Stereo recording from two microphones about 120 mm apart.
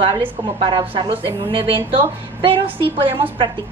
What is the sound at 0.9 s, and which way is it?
Speech, 45° right (ahead or behind).